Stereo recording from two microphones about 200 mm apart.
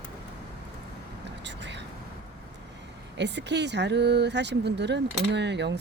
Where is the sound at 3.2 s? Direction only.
60° right (ahead or behind).